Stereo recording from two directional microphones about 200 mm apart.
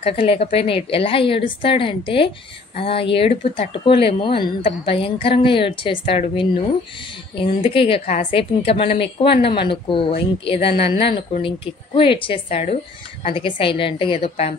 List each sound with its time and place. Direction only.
0.0 s a woman's voice: 30° left (ahead or behind)